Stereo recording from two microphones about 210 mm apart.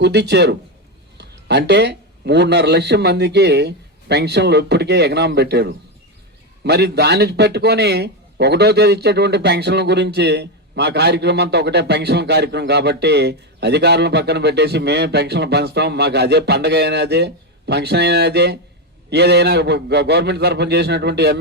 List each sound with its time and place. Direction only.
0.0 s a man's voice: 55° right (ahead or behind)